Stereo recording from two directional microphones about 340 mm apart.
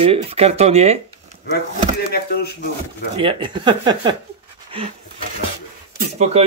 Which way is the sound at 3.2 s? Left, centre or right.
Centre.